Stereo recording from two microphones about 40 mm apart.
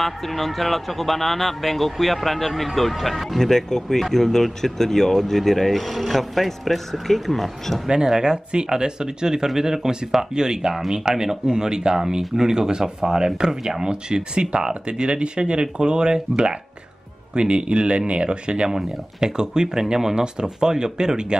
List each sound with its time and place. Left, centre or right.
0.0 s speech: centre
8.2 s speech: centre
18.7 s speech: centre